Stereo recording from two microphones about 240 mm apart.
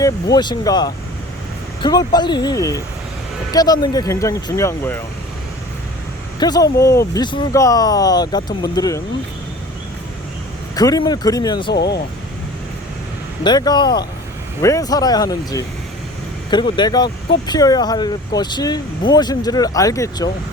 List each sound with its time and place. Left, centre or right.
0.0 s speech: centre
6.4 s speech: centre
10.8 s speech: centre
11.7 s speech: left
13.4 s speech: centre